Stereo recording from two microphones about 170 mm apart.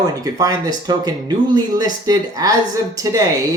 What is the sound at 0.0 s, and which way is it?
Speech, 20° right (ahead or behind).